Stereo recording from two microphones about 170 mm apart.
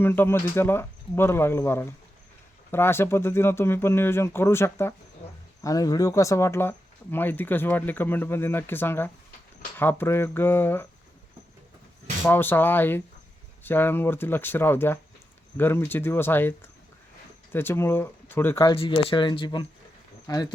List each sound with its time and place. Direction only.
0.0 s speech: 15° left (ahead or behind)
12.2 s speech: 10° left (ahead or behind)
18.7 s speech: 30° left (ahead or behind)